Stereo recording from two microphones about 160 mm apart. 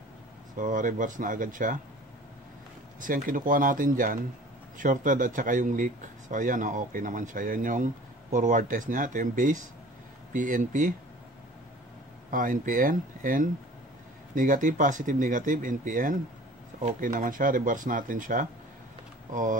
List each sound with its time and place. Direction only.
0.6 s speech: 55° right (ahead or behind)
3.0 s speech: 60° right (ahead or behind)
12.3 s speech: 55° right (ahead or behind)